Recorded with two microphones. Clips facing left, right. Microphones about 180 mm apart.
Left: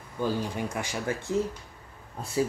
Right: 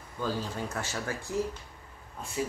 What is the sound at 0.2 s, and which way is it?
Speech, 15° left (ahead or behind).